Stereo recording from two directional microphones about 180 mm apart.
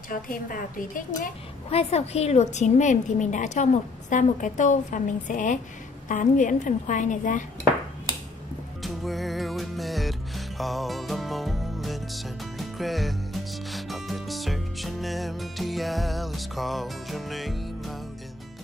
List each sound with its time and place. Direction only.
0.1 s a woman's voice: 50° left (ahead or behind)
1.7 s a woman's voice: 35° left (ahead or behind)
8.8 s music: centre (ahead or behind)